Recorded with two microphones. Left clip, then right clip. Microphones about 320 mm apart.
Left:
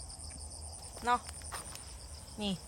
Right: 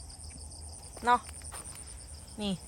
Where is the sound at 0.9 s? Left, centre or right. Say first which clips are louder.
Right 5 dB; centre.